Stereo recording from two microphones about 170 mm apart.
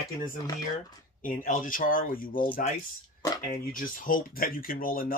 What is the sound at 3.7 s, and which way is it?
Speech, 55° left (ahead or behind).